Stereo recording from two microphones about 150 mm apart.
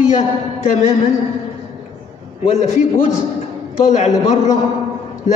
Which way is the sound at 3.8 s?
50° left (ahead or behind).